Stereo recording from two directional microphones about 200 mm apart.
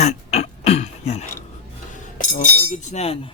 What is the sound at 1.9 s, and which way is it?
Speech, 40° left (ahead or behind).